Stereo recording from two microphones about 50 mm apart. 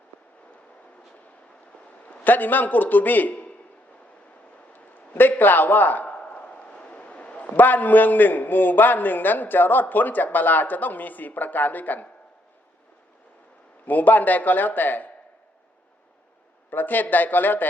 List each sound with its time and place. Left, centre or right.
2.2 s a man's voice: left
4.7 s a sound: left
5.4 s a man's voice: left
13.8 s a man's voice: left
16.6 s a man's voice: left